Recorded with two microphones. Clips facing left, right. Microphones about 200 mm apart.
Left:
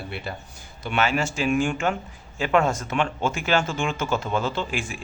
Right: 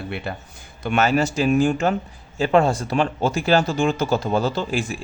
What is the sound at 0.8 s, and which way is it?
Speech, 45° right (ahead or behind).